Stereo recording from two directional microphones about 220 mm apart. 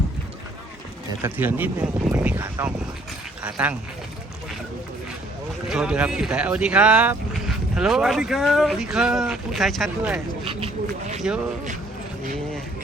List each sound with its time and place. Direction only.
1.2 s speech: 10° right (ahead or behind)
5.6 s speech: 5° right (ahead or behind)
10.4 s speech: 25° right (ahead or behind)
11.3 s speech: 5° right (ahead or behind)